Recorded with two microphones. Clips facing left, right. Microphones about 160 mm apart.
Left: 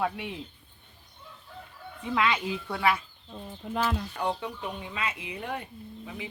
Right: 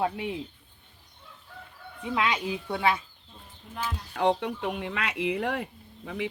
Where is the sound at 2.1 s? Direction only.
20° right (ahead or behind).